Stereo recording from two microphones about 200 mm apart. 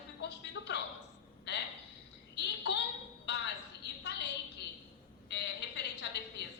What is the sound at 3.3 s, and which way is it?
Music, 55° left (ahead or behind).